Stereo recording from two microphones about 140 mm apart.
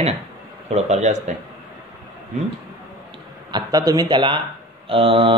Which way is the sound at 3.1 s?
30° right (ahead or behind).